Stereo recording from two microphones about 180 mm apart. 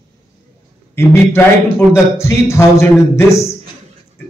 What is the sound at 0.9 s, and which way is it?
A man's voice, 15° left (ahead or behind).